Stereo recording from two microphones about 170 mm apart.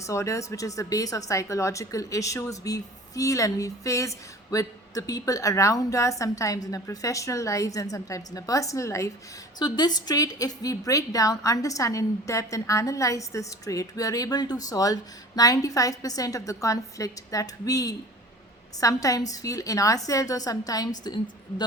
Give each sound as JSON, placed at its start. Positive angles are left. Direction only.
{"t": 0.0, "sound": "a woman's voice", "side_deg": 15}